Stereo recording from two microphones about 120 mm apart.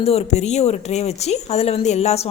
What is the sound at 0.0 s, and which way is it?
A woman's voice, 60° left (ahead or behind).